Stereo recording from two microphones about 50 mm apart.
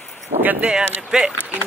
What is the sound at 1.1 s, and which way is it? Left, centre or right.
Speech, centre.